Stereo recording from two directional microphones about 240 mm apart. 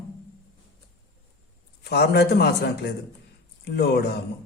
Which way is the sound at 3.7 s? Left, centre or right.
Left.